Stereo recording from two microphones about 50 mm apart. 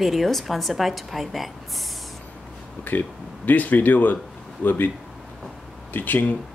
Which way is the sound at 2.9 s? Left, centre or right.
Left.